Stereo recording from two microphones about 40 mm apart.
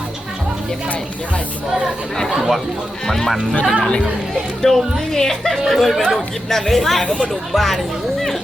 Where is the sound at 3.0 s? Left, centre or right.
Centre.